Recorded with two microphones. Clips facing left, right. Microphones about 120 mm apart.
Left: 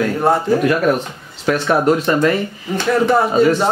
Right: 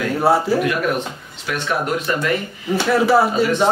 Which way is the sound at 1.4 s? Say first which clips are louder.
Left 7 dB; 40° left (ahead or behind).